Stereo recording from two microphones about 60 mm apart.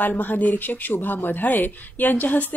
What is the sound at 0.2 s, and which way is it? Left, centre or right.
A woman's voice, left.